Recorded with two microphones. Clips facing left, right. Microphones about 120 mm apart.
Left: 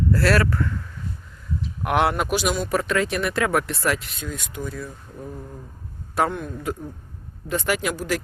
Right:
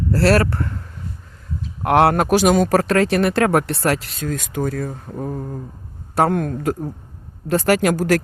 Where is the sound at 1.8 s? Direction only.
35° right (ahead or behind).